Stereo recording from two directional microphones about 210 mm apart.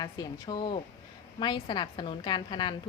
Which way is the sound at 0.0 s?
20° left (ahead or behind).